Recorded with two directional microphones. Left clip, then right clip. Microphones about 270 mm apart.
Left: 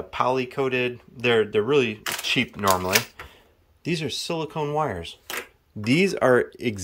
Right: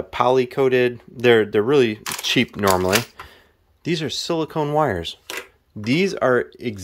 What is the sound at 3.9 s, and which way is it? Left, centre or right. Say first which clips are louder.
Speech: right 4 dB; centre.